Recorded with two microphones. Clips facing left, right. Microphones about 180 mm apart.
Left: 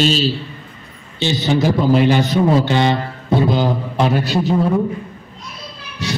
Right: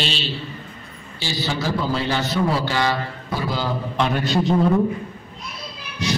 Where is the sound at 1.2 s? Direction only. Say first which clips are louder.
Left 9 dB; 20° left (ahead or behind).